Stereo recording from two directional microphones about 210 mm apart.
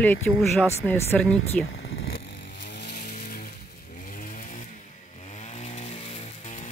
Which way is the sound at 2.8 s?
50° left (ahead or behind).